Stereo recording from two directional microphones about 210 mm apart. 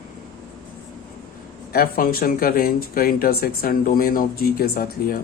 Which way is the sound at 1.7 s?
45° left (ahead or behind).